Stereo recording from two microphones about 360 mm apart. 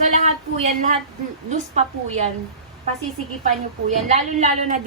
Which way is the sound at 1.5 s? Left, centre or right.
Centre.